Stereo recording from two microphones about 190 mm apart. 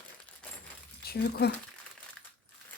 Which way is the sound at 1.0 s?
55° left (ahead or behind).